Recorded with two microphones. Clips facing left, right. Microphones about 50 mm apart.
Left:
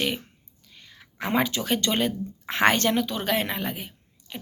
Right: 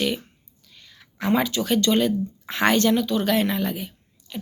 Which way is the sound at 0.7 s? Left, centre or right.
Left.